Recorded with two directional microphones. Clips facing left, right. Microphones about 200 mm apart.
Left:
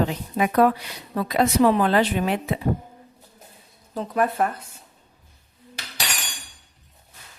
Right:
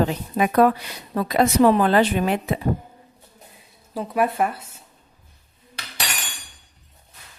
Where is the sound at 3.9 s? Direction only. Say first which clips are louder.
Right 1 dB; 10° right (ahead or behind).